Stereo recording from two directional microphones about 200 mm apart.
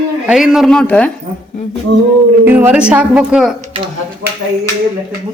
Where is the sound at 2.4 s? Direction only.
10° right (ahead or behind).